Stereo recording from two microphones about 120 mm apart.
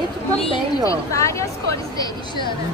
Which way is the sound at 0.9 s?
25° left (ahead or behind).